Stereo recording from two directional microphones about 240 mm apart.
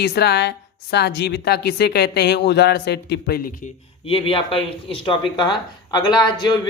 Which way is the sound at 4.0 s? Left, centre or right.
Left.